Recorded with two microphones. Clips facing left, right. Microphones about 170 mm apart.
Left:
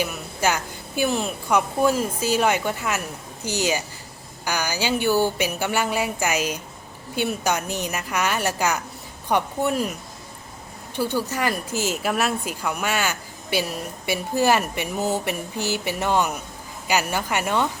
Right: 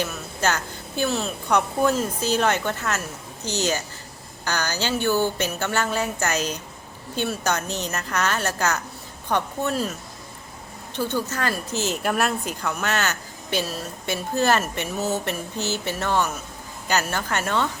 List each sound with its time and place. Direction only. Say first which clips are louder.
0.0 s a woman's voice: left 1 dB; 10° left (ahead or behind)